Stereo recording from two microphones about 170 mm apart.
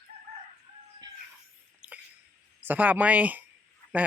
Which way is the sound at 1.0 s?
25° right (ahead or behind).